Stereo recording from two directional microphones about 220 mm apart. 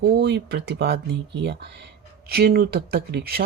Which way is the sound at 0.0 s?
50° right (ahead or behind).